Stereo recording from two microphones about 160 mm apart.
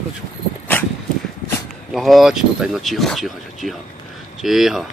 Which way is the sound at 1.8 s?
Centre (ahead or behind).